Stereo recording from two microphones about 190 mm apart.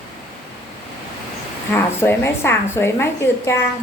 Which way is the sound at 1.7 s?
10° left (ahead or behind).